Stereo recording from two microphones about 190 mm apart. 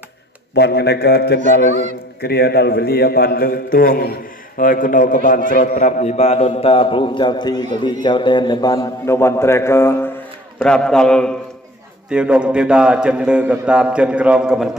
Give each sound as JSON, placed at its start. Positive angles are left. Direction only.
{"t": 0.6, "sound": "a man's voice", "side_deg": 60}